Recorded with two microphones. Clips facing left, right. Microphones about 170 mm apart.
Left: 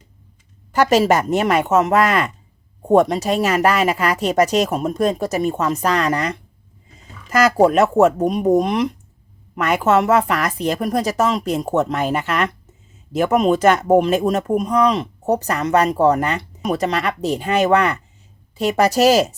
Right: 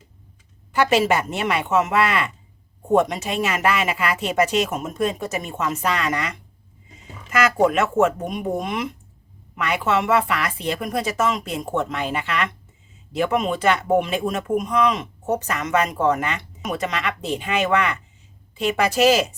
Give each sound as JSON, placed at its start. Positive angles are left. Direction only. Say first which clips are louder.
{"t": 0.7, "sound": "speech", "louder": "left 4 dB", "side_deg": 40}